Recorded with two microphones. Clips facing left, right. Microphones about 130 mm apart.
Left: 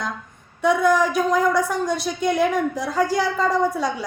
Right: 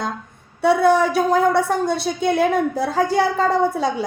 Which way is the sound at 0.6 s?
35° right (ahead or behind).